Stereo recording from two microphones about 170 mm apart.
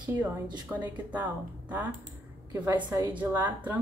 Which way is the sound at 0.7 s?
10° right (ahead or behind).